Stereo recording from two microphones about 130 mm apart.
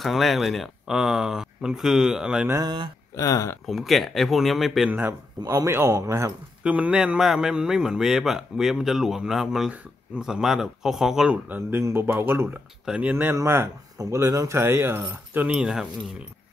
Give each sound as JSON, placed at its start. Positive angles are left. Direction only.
{"t": 0.0, "sound": "a man's voice", "side_deg": 0}
{"t": 2.5, "sound": "speech", "side_deg": -35}
{"t": 3.2, "sound": "speech", "side_deg": 25}
{"t": 3.6, "sound": "a man's voice", "side_deg": 0}
{"t": 5.4, "sound": "speech", "side_deg": -25}
{"t": 6.6, "sound": "a man's voice", "side_deg": -10}
{"t": 15.4, "sound": "a man's voice", "side_deg": -5}